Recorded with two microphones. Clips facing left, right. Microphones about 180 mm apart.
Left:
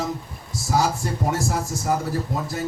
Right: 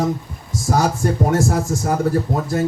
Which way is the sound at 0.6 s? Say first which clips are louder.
Right 4 dB; 60° right (ahead or behind).